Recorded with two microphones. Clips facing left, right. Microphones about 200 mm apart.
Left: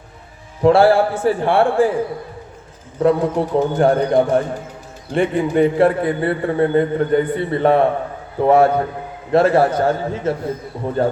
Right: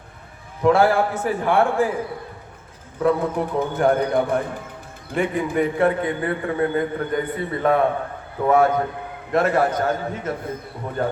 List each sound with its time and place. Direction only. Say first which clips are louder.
0.6 s a man's voice: left 5 dB; 30° left (ahead or behind)
3.0 s a man's voice: left 4 dB; 30° left (ahead or behind)